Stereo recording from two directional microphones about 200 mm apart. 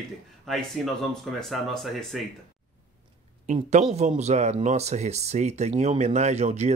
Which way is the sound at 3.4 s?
35° right (ahead or behind).